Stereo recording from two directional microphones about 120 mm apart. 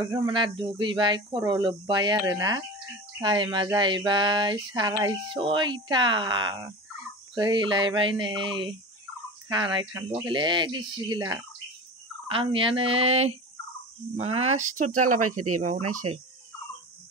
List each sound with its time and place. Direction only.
0.0 s speech: 45° right (ahead or behind)
3.2 s speech: 40° right (ahead or behind)
12.3 s speech: 50° right (ahead or behind); by 16.0 s 90° right